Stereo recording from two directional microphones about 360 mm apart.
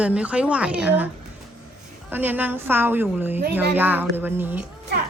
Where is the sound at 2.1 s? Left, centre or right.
Centre.